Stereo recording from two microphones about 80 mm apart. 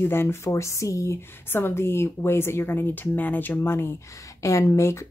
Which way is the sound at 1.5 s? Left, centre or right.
Left.